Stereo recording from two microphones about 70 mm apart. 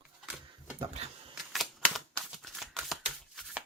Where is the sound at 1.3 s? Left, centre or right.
Centre.